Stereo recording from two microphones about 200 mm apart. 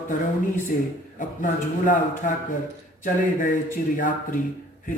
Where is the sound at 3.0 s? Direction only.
40° left (ahead or behind).